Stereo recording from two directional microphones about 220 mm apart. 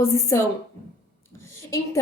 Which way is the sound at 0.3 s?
10° left (ahead or behind).